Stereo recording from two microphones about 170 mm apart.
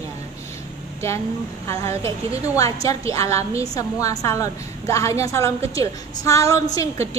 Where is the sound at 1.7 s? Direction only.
15° left (ahead or behind).